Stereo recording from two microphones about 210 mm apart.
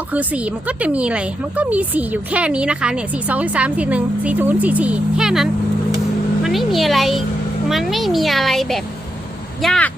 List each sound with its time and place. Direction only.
0.1 s a woman's voice: 5° right (ahead or behind)